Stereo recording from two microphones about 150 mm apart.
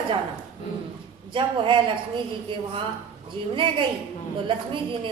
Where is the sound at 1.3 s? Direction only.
35° right (ahead or behind).